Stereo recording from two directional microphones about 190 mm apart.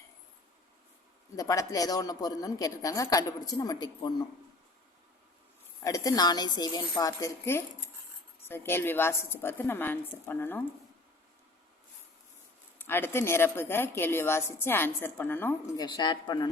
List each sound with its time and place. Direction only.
1.4 s speech: 20° left (ahead or behind)
5.8 s a woman's voice: 20° left (ahead or behind)
12.8 s a woman's voice: 10° left (ahead or behind)